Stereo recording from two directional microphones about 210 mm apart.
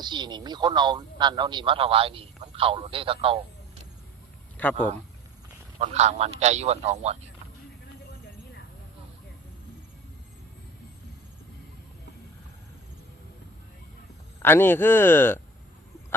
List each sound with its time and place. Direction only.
0.0 s speech: 20° right (ahead or behind)
4.6 s speech: 5° left (ahead or behind)
5.8 s a man's voice: 30° right (ahead or behind)
14.3 s speech: 10° left (ahead or behind)